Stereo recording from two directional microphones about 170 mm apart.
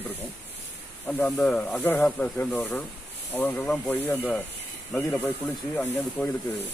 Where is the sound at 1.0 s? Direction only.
10° left (ahead or behind).